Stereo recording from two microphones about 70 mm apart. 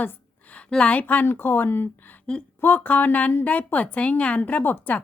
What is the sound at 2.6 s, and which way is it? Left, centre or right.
A woman's voice, left.